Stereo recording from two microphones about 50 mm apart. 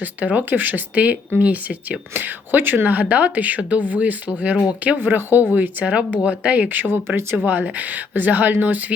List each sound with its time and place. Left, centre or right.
0.0 s speech: right
4.9 s speech: right
5.8 s speech: right